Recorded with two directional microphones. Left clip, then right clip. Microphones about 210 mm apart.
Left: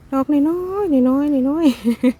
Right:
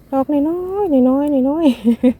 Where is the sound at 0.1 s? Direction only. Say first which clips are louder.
Right 1 dB; 15° left (ahead or behind).